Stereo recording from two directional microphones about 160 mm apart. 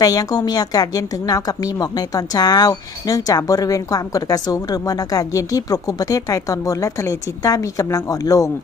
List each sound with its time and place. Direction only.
0.0 s speech: 25° left (ahead or behind)